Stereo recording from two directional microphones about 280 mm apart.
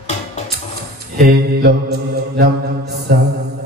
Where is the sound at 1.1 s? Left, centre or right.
Right.